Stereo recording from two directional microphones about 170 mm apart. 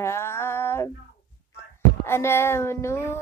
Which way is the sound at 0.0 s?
15° left (ahead or behind).